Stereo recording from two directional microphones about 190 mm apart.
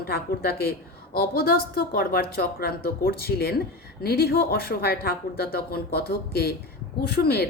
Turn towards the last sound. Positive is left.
turn(degrees=55)  # may be behind; listen again after turning